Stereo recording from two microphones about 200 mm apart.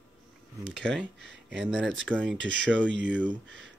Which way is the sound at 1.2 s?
60° right (ahead or behind).